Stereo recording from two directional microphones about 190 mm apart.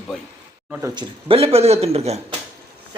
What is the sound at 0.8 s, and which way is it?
Speech, 25° right (ahead or behind).